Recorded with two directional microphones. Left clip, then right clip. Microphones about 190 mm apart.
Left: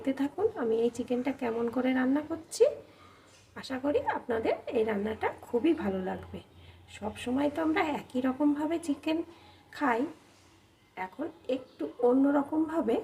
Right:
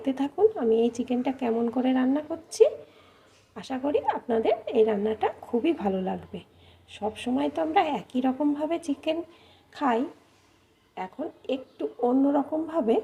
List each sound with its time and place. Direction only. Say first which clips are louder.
0.0 s a woman's voice: right 6 dB; 25° right (ahead or behind)
7.3 s a woman's voice: right 4 dB; 25° right (ahead or behind)